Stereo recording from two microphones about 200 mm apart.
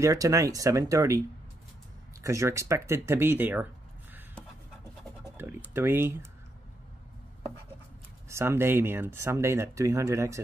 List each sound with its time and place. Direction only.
0.0 s speech: 15° right (ahead or behind)
2.2 s speech: 15° right (ahead or behind)
5.2 s speech: 10° right (ahead or behind)
8.3 s speech: 15° right (ahead or behind)